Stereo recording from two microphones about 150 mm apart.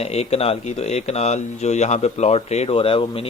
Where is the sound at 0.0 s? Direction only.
45° left (ahead or behind).